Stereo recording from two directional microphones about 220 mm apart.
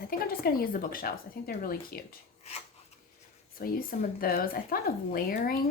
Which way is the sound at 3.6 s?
40° left (ahead or behind).